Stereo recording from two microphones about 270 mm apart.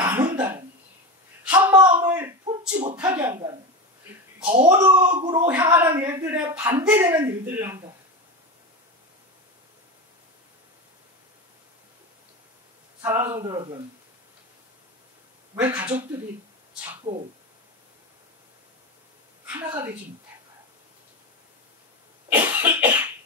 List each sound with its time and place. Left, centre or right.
0.0 s cough: centre
1.4 s a sound: centre
2.7 s speech: right
3.2 s speech: centre
4.6 s speech: centre
13.0 s speech: centre
15.5 s speech: centre
17.1 s speech: centre
19.4 s a woman's voice: centre
22.3 s cough: centre